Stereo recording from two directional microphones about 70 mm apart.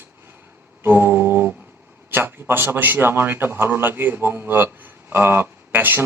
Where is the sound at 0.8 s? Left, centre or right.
Right.